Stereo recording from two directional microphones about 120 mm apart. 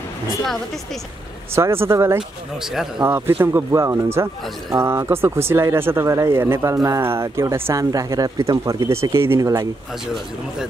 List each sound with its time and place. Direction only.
1.5 s speech: 20° right (ahead or behind)
2.1 s speech: 5° right (ahead or behind)
3.1 s speech: 20° right (ahead or behind)